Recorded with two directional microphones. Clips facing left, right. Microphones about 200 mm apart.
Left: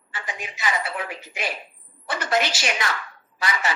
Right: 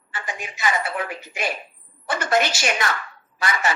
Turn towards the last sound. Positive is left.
turn(degrees=-50)  # may be behind; listen again after turning